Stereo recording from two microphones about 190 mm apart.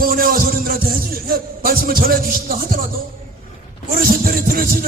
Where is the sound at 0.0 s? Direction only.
50° right (ahead or behind).